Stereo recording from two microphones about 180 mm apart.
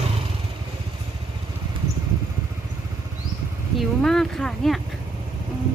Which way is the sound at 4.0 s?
Centre (ahead or behind).